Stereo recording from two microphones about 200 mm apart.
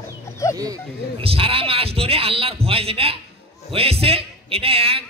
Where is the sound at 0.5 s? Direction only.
20° right (ahead or behind).